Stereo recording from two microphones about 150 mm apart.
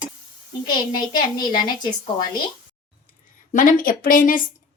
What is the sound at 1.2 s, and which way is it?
Speech, 30° left (ahead or behind).